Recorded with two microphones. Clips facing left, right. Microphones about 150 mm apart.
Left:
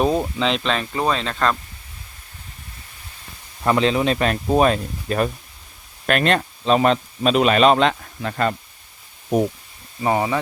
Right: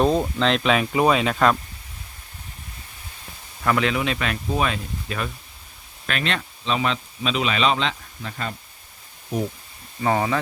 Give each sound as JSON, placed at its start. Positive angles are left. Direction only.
{"t": 0.0, "sound": "speech", "side_deg": 5}
{"t": 3.6, "sound": "speech", "side_deg": 25}
{"t": 10.0, "sound": "speech", "side_deg": 15}